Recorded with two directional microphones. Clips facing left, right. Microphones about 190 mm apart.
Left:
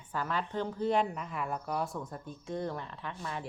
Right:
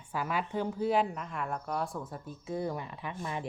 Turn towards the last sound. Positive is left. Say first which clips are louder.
# right 2 dB
turn(degrees=-15)  # may be behind; listen again after turning